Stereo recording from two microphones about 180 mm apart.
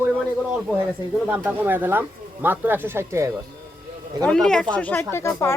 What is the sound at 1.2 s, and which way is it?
Speech, 10° right (ahead or behind).